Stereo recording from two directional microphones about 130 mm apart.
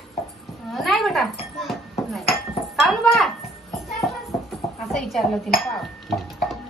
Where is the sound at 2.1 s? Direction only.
Centre (ahead or behind).